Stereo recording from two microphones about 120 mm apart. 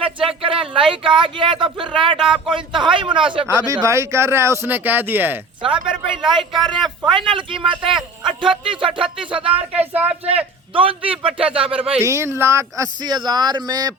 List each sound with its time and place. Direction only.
0.0 s a man's voice: 50° right (ahead or behind)
2.1 s speech: 5° right (ahead or behind)
2.5 s a man's voice: 40° right (ahead or behind)
3.4 s speech: 25° right (ahead or behind)
5.6 s a man's voice: 45° right (ahead or behind)
9.7 s speech: 15° right (ahead or behind)
10.8 s a man's voice: 50° right (ahead or behind)
12.0 s speech: 20° right (ahead or behind)